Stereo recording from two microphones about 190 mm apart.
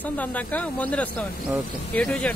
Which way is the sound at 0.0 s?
10° left (ahead or behind).